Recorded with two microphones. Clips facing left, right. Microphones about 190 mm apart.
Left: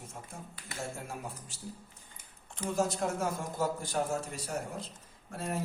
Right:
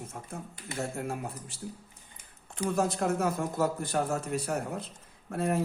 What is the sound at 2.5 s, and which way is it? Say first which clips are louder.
A man's voice: right 3 dB; 60° right (ahead or behind).